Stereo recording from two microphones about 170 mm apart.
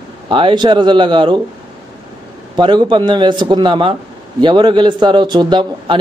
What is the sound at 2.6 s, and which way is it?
A man's voice, 30° right (ahead or behind).